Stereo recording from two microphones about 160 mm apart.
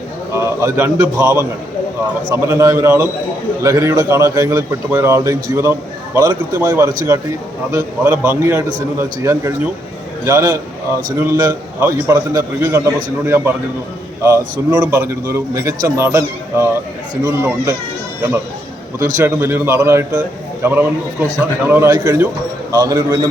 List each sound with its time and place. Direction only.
0.3 s a man's voice: 20° right (ahead or behind)
14.8 s a man's voice: 15° right (ahead or behind)
19.1 s a man's voice: 15° right (ahead or behind)